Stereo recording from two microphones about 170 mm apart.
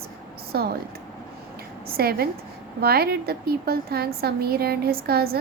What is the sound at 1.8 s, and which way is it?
A woman's voice, 65° right (ahead or behind).